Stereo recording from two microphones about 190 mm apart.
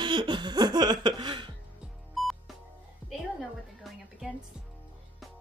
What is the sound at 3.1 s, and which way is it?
A woman's voice, centre (ahead or behind).